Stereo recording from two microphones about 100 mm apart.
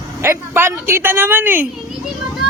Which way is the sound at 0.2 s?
25° right (ahead or behind).